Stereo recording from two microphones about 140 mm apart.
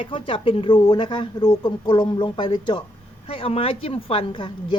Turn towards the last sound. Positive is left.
turn(degrees=35)  # may be behind; listen again after turning